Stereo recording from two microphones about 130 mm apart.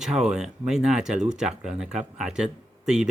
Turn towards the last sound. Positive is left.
turn(degrees=-5)  # may be behind; listen again after turning